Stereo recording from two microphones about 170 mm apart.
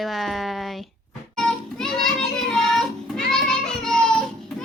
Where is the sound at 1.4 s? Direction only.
5° left (ahead or behind).